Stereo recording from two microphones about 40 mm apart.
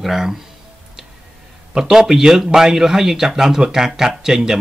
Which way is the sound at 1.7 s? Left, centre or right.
Centre.